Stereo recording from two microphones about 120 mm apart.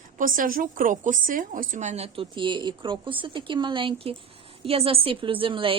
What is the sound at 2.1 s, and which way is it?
A woman's voice, 45° right (ahead or behind).